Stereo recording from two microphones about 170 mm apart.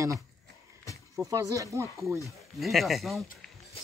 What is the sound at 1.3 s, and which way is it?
Speech, 20° right (ahead or behind).